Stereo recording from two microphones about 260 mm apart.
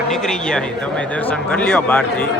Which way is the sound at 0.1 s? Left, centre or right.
Centre.